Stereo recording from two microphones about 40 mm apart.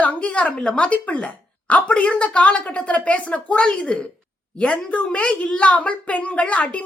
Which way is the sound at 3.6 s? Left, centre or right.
Left.